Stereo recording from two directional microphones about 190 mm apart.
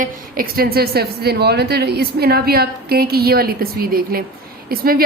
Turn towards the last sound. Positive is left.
turn(degrees=-50)  # may be behind; listen again after turning